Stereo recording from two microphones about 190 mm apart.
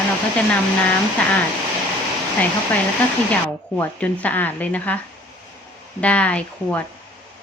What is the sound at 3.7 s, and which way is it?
Speech, 10° left (ahead or behind).